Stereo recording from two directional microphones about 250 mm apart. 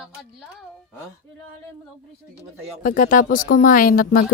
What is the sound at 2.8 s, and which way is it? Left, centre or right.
Speech, left.